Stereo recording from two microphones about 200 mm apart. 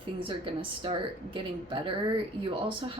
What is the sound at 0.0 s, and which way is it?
Speech, 25° right (ahead or behind).